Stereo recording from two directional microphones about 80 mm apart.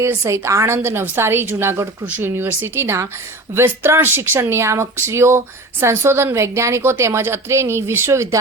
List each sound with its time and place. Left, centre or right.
0.0 s a woman's voice: right